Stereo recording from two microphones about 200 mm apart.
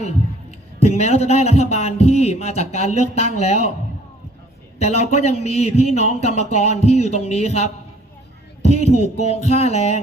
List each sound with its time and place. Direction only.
0.8 s a man's voice: 35° left (ahead or behind)
4.8 s a man's voice: 30° left (ahead or behind)